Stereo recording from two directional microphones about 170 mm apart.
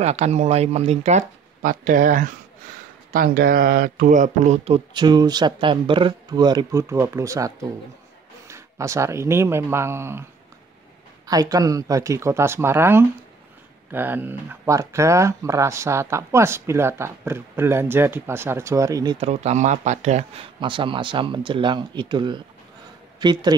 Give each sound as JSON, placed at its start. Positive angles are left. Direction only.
{"t": 0.0, "sound": "speech", "side_deg": -40}
{"t": 11.2, "sound": "speech", "side_deg": -20}
{"t": 19.1, "sound": "speech", "side_deg": -40}
{"t": 20.6, "sound": "a man's voice", "side_deg": -30}